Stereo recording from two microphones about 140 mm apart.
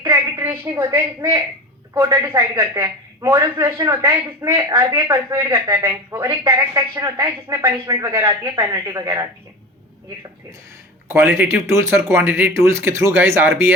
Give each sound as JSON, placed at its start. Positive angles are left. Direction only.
{"t": 0.0, "sound": "a woman's voice", "side_deg": -20}
{"t": 11.1, "sound": "speech", "side_deg": -15}